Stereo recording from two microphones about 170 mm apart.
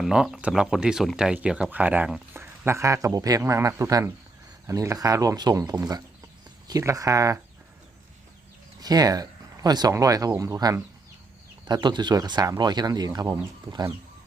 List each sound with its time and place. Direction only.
0.0 s speech: 5° right (ahead or behind); by 7.3 s 20° right (ahead or behind)
8.8 s speech: 20° right (ahead or behind)